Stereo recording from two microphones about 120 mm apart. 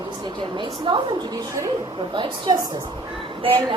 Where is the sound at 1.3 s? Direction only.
30° right (ahead or behind).